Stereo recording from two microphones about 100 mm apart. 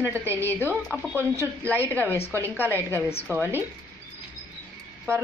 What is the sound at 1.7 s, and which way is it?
A woman's voice, 20° left (ahead or behind).